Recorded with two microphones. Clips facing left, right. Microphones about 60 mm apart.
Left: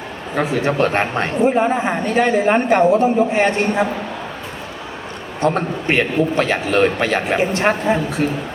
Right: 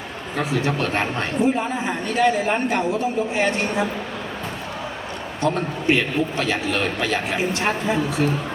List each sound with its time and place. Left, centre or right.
0.3 s a man's voice: left
5.4 s a man's voice: left
8.2 s a woman's voice: left